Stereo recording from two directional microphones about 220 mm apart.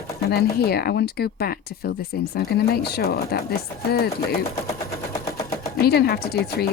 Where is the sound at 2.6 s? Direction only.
45° left (ahead or behind).